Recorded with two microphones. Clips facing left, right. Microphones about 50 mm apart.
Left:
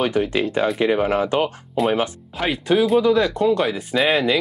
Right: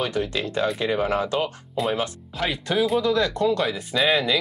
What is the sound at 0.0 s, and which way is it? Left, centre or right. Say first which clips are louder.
Speech: left 5 dB; left.